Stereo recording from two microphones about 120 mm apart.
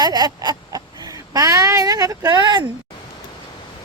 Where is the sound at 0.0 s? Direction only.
35° right (ahead or behind).